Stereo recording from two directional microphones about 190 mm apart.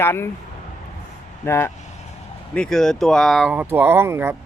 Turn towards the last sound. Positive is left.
turn(degrees=-15)  # may be behind; listen again after turning